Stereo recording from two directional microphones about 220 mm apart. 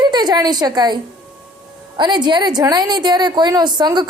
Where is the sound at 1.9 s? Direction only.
20° right (ahead or behind).